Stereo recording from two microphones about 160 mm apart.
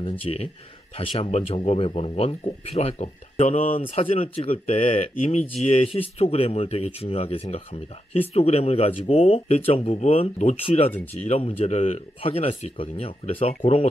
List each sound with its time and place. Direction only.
0.0 s speech: 35° left (ahead or behind)